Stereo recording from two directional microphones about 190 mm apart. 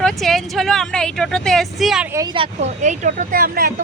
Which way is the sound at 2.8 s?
40° right (ahead or behind).